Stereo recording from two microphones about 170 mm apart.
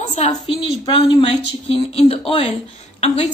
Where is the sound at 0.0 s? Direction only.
40° left (ahead or behind).